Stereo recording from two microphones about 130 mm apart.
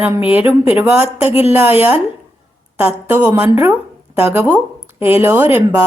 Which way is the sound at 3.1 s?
15° right (ahead or behind).